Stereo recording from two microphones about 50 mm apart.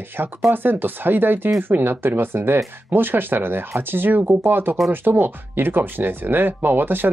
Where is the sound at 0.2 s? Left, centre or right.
Right.